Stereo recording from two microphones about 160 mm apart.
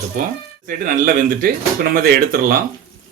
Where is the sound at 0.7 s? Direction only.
60° right (ahead or behind).